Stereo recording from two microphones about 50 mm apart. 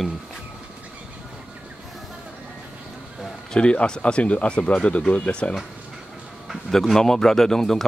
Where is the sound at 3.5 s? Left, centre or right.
Left.